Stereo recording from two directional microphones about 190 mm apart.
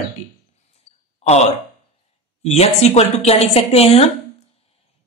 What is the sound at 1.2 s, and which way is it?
A woman's voice, 35° left (ahead or behind).